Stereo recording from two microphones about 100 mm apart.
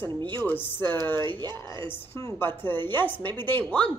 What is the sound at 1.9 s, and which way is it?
Speech, 20° left (ahead or behind).